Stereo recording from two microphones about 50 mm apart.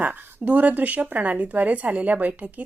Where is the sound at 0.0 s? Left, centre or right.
Right.